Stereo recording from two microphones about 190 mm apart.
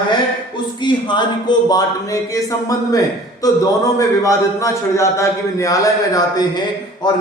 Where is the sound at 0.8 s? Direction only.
25° left (ahead or behind).